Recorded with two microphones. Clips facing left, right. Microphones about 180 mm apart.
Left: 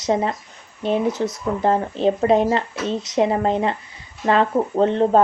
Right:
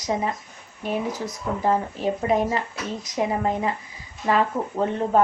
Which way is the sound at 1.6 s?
25° left (ahead or behind).